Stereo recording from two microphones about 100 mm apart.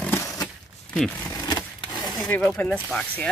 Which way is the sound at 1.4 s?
45° left (ahead or behind).